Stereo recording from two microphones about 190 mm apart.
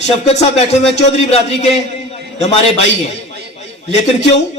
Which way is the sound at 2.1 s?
35° left (ahead or behind).